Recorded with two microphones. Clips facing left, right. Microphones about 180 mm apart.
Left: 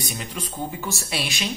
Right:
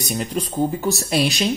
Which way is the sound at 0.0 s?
40° right (ahead or behind).